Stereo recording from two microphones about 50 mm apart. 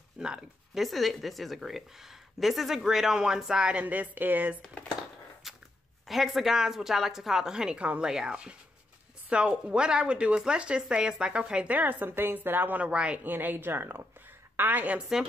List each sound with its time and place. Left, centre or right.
0.2 s a woman's voice: centre
0.7 s a woman's voice: centre
3.8 s a woman's voice: right
5.4 s walk: centre
6.0 s a woman's voice: centre
11.7 s a woman's voice: right
13.2 s speech: right
14.6 s a woman's voice: right